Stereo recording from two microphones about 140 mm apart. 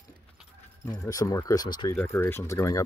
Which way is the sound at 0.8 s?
20° left (ahead or behind).